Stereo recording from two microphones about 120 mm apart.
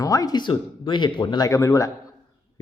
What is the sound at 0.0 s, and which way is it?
Speech, 30° left (ahead or behind).